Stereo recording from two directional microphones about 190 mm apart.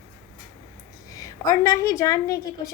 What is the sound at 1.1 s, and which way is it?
A woman's voice, 20° left (ahead or behind).